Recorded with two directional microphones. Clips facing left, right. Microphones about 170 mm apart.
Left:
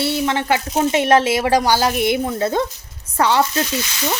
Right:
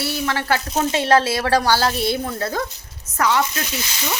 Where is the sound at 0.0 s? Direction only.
25° left (ahead or behind).